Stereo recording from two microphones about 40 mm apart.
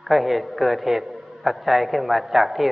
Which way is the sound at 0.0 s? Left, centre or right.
Centre.